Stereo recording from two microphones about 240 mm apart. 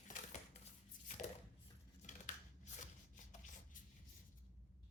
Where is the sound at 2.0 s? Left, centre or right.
Left.